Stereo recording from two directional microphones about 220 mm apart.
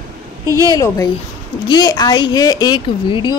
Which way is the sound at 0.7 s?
15° left (ahead or behind).